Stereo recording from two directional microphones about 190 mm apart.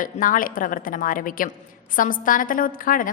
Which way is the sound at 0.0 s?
45° left (ahead or behind).